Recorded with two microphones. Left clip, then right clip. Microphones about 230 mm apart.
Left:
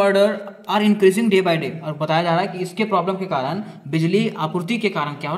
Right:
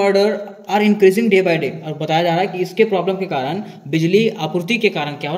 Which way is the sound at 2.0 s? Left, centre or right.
Left.